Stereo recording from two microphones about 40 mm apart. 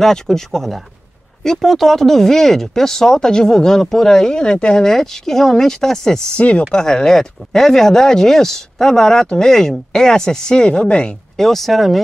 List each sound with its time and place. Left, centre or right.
0.0 s speech: centre
6.3 s speech: left
6.7 s speech: centre
11.3 s speech: centre